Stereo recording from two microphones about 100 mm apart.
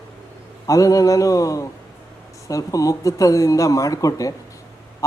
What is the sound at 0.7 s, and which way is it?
Speech, 35° left (ahead or behind).